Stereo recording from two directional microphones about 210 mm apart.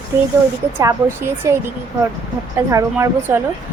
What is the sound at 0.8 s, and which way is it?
Speech, 10° right (ahead or behind).